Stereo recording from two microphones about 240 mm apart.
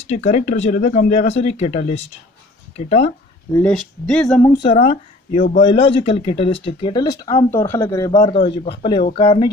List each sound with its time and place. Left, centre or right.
0.0 s speech: left
3.5 s speech: centre
4.7 s speech: left